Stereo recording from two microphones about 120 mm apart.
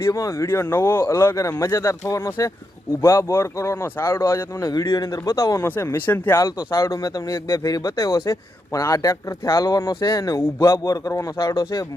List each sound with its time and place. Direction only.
0.0 s speech: 25° left (ahead or behind)